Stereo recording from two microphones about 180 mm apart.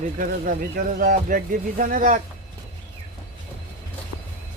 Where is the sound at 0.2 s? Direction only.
50° right (ahead or behind).